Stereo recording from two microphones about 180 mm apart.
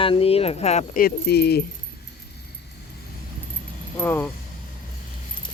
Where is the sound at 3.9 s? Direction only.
10° left (ahead or behind).